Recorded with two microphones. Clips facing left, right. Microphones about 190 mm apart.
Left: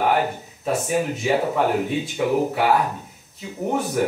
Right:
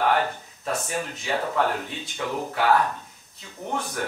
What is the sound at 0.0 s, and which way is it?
Speech, 15° left (ahead or behind).